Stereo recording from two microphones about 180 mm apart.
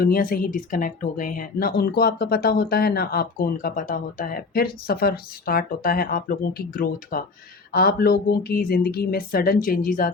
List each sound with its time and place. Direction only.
0.0 s speech: 55° left (ahead or behind)